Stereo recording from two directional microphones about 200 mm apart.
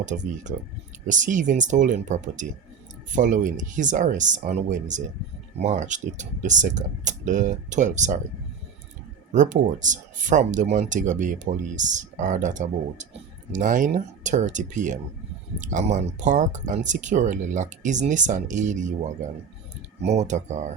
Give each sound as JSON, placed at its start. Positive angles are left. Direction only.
{"t": 0.0, "sound": "speech", "side_deg": -35}
{"t": 9.3, "sound": "speech", "side_deg": -40}
{"t": 20.0, "sound": "speech", "side_deg": -35}